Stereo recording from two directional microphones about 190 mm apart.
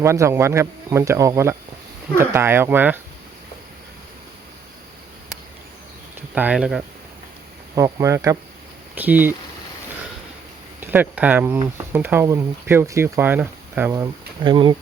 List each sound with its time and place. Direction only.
0.0 s speech: 15° right (ahead or behind)
6.3 s speech: 5° right (ahead or behind)
7.8 s speech: 15° right (ahead or behind)
10.8 s speech: 10° right (ahead or behind)